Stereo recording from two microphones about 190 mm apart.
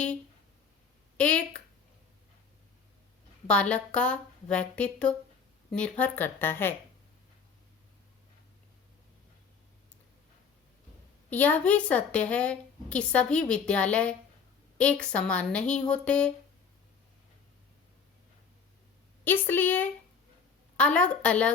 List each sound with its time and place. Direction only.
1.1 s a woman's voice: 5° left (ahead or behind)
3.4 s a woman's voice: 5° left (ahead or behind)
11.3 s a woman's voice: 10° left (ahead or behind)
19.2 s a woman's voice: 10° left (ahead or behind)